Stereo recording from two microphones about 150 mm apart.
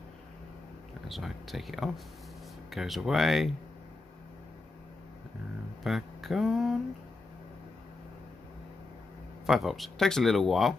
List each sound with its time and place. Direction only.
1.0 s speech: centre (ahead or behind)
5.9 s a sound: centre (ahead or behind)
9.5 s speech: centre (ahead or behind)